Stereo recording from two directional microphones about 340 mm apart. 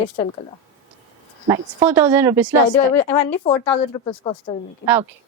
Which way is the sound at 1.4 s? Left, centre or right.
Centre.